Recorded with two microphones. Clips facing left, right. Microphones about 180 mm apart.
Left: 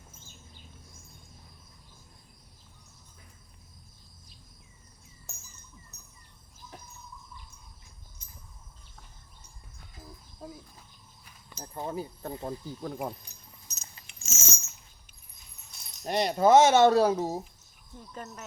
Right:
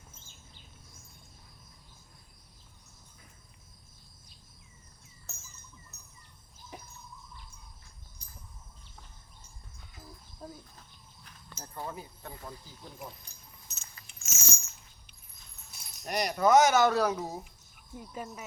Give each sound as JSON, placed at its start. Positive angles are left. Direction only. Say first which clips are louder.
{"t": 5.3, "sound": "a sound", "louder": "left 1 dB", "side_deg": 15}
{"t": 8.2, "sound": "chicken", "louder": "even", "side_deg": 20}
{"t": 10.4, "sound": "a sound", "louder": "left 2 dB", "side_deg": 10}
{"t": 11.7, "sound": "speech", "louder": "left 6 dB", "side_deg": 25}
{"t": 12.5, "sound": "speech", "louder": "left 11 dB", "side_deg": 55}
{"t": 13.7, "sound": "keys jangling", "louder": "left 2 dB", "side_deg": 40}
{"t": 14.2, "sound": "a sound", "louder": "left 2 dB", "side_deg": 20}
{"t": 15.7, "sound": "keys jangling", "louder": "even", "side_deg": -10}
{"t": 16.0, "sound": "speech", "louder": "left 4 dB", "side_deg": 25}
{"t": 17.9, "sound": "cricket", "louder": "right 2 dB", "side_deg": -10}